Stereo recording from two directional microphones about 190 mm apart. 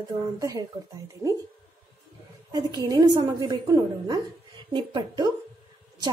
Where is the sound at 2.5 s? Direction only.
20° right (ahead or behind).